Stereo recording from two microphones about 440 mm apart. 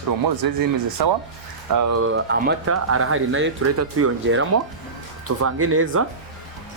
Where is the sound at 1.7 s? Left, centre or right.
Right.